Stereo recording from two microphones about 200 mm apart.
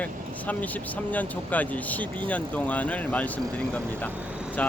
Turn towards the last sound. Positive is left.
turn(degrees=5)  # may be behind; listen again after turning